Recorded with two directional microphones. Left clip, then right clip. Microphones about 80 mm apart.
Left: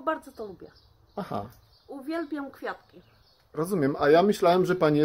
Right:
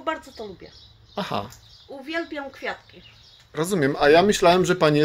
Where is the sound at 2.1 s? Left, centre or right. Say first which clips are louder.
Right 3 dB; left.